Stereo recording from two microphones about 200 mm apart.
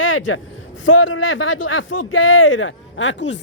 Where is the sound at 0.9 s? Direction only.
80° left.